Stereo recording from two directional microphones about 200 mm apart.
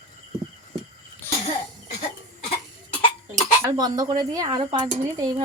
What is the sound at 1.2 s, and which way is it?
Cough, 10° left (ahead or behind).